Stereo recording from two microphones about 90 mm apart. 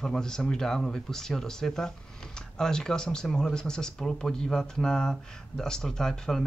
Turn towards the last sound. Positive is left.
turn(degrees=5)  # may be behind; listen again after turning